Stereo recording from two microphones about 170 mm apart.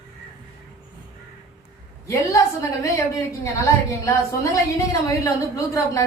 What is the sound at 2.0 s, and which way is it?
A woman's voice, 20° left (ahead or behind).